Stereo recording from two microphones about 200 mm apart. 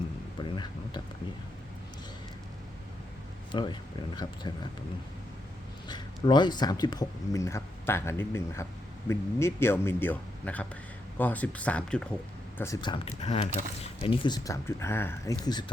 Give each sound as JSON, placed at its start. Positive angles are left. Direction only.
{"t": 0.3, "sound": "a sound", "side_deg": 25}
{"t": 3.5, "sound": "speech", "side_deg": 20}
{"t": 5.9, "sound": "speech", "side_deg": 20}